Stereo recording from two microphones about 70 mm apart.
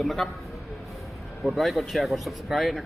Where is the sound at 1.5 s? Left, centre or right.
Centre.